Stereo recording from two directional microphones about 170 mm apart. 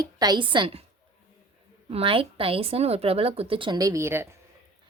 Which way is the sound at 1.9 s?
35° right (ahead or behind).